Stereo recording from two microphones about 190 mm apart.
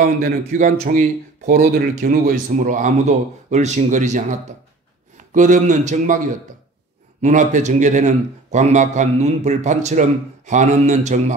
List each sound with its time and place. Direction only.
0.0 s speech: 45° right (ahead or behind)